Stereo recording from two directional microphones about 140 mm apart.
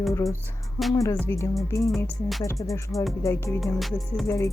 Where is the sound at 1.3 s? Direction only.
15° left (ahead or behind).